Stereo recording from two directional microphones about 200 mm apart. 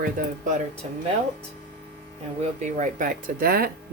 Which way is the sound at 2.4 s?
35° right (ahead or behind).